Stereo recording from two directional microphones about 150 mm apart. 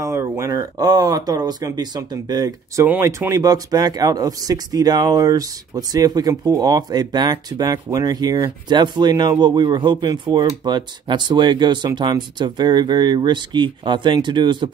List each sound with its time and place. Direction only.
0.0 s speech: 20° right (ahead or behind)